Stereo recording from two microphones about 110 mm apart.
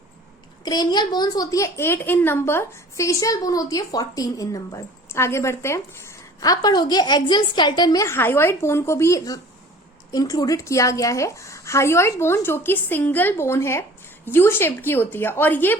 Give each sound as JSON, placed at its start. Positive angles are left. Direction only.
{"t": 0.6, "sound": "a child's voice", "side_deg": 40}
{"t": 8.0, "sound": "a woman's voice", "side_deg": 20}